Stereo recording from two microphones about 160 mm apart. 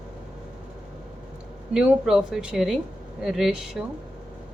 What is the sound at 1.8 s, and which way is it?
A woman's voice, 5° right (ahead or behind).